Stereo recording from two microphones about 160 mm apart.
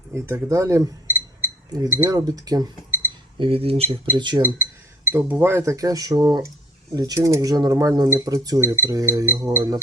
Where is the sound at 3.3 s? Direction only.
35° right (ahead or behind).